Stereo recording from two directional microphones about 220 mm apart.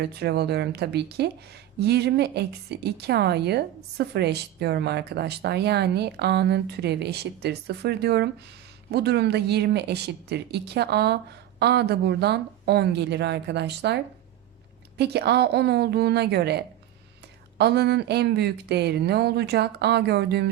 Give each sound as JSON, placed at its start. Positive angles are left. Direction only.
{"t": 0.0, "sound": "speech", "side_deg": -50}